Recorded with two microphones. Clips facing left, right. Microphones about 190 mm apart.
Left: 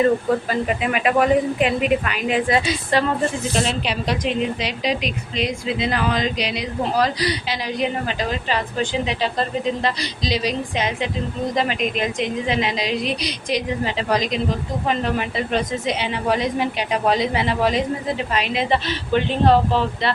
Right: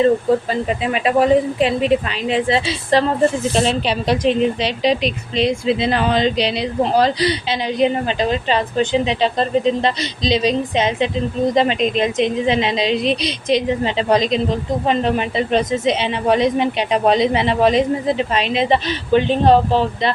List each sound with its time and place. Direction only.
0.5 s a woman's voice: 25° right (ahead or behind)